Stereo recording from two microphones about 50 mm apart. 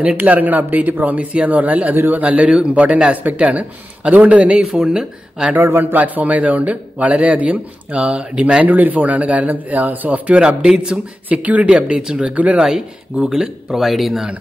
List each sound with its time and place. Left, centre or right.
0.0 s speech: right
5.6 s a man's voice: right
5.9 s speech: right
8.6 s speech: right
10.4 s speech: centre
11.2 s speech: right
12.5 s speech: centre
13.7 s speech: centre